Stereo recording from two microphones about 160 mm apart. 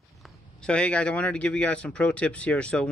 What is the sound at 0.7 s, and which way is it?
A man's voice, 5° left (ahead or behind).